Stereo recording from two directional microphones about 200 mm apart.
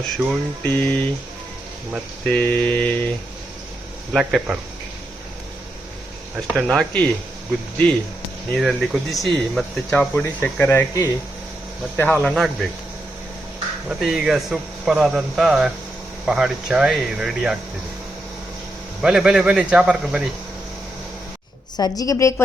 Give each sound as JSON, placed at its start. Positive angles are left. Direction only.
{"t": 0.2, "sound": "speech", "side_deg": -5}
{"t": 0.6, "sound": "speech", "side_deg": 10}
{"t": 2.2, "sound": "speech", "side_deg": 5}
{"t": 4.1, "sound": "speech", "side_deg": 0}
{"t": 6.3, "sound": "speech", "side_deg": -5}
{"t": 8.5, "sound": "speech", "side_deg": 0}
{"t": 14.0, "sound": "speech", "side_deg": 0}
{"t": 19.0, "sound": "speech", "side_deg": -5}
{"t": 21.8, "sound": "speech", "side_deg": 20}